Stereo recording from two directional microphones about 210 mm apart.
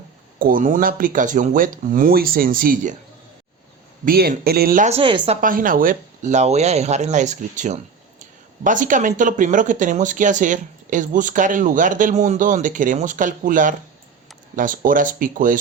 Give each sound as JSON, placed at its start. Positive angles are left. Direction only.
{"t": 0.3, "sound": "speech", "side_deg": -40}
{"t": 4.0, "sound": "speech", "side_deg": -45}
{"t": 5.4, "sound": "speech", "side_deg": -40}